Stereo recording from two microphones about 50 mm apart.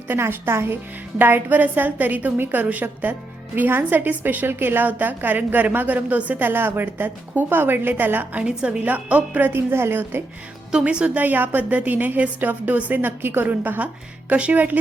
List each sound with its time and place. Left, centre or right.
0.2 s speech: right
1.2 s a woman's voice: right
6.5 s a woman's voice: right
8.4 s a woman's voice: right
9.5 s a woman's voice: right
10.8 s a woman's voice: right
11.2 s a woman's voice: right